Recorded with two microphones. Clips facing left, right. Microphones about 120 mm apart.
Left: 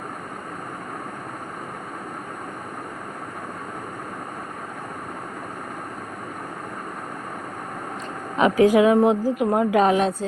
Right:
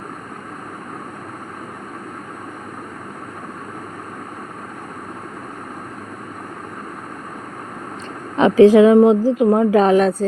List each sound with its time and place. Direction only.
8.4 s a woman's voice: 30° right (ahead or behind)